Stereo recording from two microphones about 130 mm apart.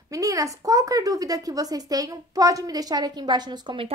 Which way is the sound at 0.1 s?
25° right (ahead or behind).